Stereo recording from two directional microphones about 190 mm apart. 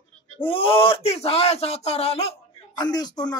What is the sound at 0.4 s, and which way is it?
Speech, 30° left (ahead or behind).